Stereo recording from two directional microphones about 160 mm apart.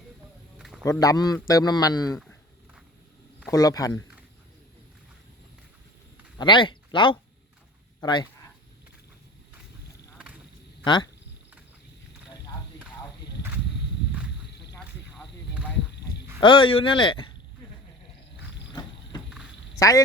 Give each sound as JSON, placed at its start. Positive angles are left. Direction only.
{"t": 0.6, "sound": "a sound", "side_deg": 0}
{"t": 0.9, "sound": "a man's voice", "side_deg": 20}
{"t": 3.5, "sound": "a man's voice", "side_deg": 20}
{"t": 6.4, "sound": "speech", "side_deg": 30}
{"t": 10.8, "sound": "a man's voice", "side_deg": 30}
{"t": 14.8, "sound": "a sound", "side_deg": -5}
{"t": 16.4, "sound": "speech", "side_deg": 30}
{"t": 19.3, "sound": "quack", "side_deg": -5}